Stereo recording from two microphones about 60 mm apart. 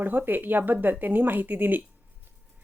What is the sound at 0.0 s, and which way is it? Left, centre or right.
A woman's voice, right.